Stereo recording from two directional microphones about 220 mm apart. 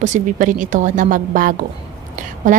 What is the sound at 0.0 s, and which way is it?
A woman's voice, 35° right (ahead or behind).